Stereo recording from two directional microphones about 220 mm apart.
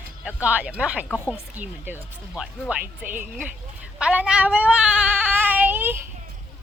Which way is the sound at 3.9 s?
5° right (ahead or behind).